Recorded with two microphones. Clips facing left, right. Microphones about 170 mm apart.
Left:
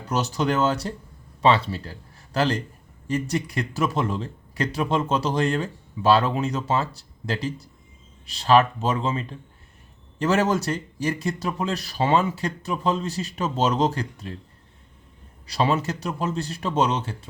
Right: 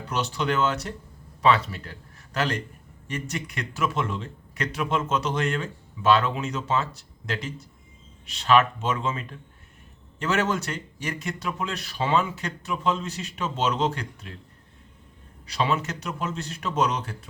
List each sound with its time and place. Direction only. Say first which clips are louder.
0.1 s a man's voice: left 3 dB; 40° left (ahead or behind)
15.4 s a man's voice: left 3 dB; 35° left (ahead or behind)